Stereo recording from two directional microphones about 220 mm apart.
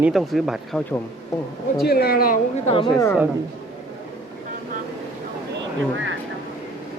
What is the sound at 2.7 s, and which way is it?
Speech, 25° left (ahead or behind).